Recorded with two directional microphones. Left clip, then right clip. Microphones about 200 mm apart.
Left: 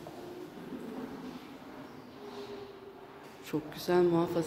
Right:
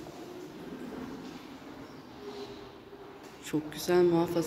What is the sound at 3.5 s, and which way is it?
Speech, 5° left (ahead or behind).